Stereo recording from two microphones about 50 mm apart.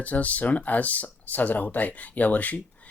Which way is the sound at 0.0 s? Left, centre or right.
Left.